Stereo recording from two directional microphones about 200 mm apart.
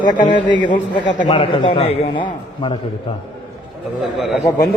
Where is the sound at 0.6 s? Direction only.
25° left (ahead or behind).